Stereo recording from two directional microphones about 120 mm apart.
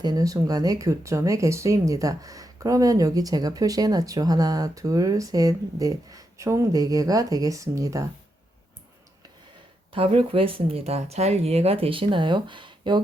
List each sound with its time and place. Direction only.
0.0 s speech: 30° right (ahead or behind)
9.9 s speech: 50° right (ahead or behind)